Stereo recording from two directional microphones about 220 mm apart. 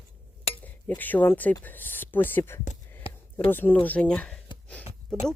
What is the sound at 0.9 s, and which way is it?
Speech, 10° left (ahead or behind).